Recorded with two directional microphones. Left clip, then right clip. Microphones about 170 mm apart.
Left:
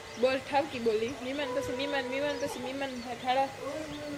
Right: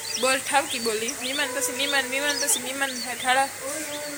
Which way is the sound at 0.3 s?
Centre (ahead or behind).